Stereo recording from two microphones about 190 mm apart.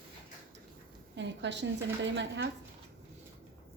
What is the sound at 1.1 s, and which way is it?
A woman's voice, 70° right (ahead or behind).